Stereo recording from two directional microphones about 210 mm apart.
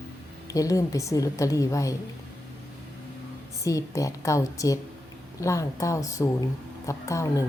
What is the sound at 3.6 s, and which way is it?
A woman's voice, 15° left (ahead or behind).